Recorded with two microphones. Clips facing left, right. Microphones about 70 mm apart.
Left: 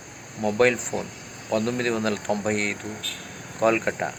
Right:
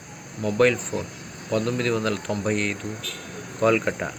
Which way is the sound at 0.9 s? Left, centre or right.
Left.